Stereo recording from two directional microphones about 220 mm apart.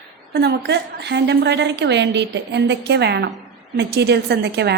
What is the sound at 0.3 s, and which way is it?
A woman's voice, 50° right (ahead or behind).